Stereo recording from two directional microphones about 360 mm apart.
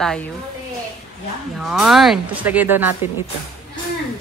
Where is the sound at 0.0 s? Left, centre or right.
Centre.